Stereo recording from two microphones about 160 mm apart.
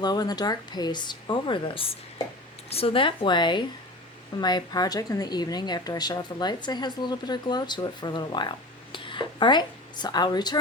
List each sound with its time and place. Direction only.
0.0 s a woman's voice: 25° left (ahead or behind)